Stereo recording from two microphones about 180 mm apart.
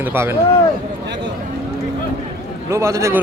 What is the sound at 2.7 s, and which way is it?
Speech, 15° right (ahead or behind).